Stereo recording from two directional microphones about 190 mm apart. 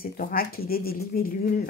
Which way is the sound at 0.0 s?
50° left (ahead or behind).